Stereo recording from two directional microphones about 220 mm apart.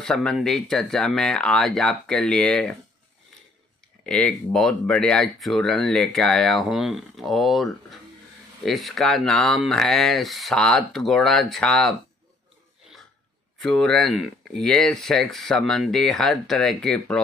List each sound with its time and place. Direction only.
0.0 s speech: 5° left (ahead or behind)
4.0 s speech: 5° left (ahead or behind)
13.6 s speech: centre (ahead or behind)